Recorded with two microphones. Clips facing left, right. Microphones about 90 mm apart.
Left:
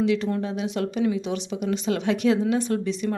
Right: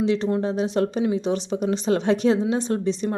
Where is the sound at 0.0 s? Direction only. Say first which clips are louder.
Right 2 dB; 30° right (ahead or behind).